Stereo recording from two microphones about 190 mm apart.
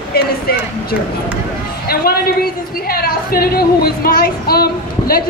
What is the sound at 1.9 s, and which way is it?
A woman's voice, 50° left (ahead or behind).